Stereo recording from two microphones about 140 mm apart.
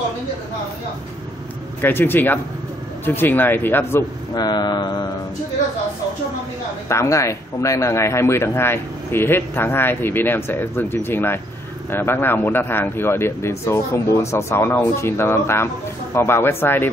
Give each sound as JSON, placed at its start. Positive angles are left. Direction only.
{"t": 1.8, "sound": "speech", "side_deg": 15}
{"t": 4.4, "sound": "a sound", "side_deg": 30}
{"t": 6.9, "sound": "speech", "side_deg": 20}